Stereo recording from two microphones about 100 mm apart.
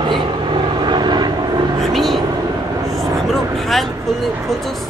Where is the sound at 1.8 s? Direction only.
Centre (ahead or behind).